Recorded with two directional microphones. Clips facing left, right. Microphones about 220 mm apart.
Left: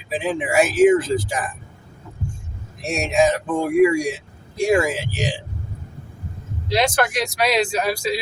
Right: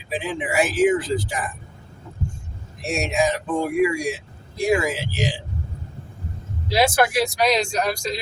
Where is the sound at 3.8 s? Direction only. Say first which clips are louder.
Left 7 dB; 45° left (ahead or behind).